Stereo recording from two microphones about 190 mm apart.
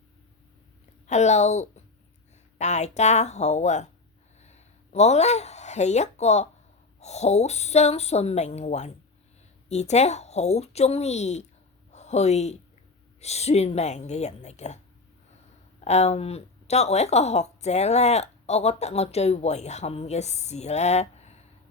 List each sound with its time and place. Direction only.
1.0 s a woman's voice: 35° left (ahead or behind)
4.4 s a sound: 35° left (ahead or behind)
7.0 s speech: 35° left (ahead or behind)
11.9 s a sound: 35° left (ahead or behind)
13.1 s speech: 35° left (ahead or behind)
15.8 s speech: 35° left (ahead or behind)